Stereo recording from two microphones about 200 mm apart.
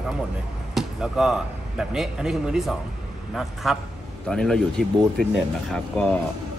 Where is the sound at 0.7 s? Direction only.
Centre (ahead or behind).